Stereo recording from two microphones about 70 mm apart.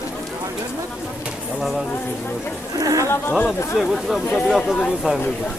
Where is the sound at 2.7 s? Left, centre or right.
Right.